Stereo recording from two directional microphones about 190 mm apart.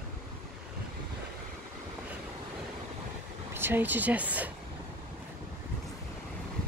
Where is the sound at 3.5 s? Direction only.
10° right (ahead or behind).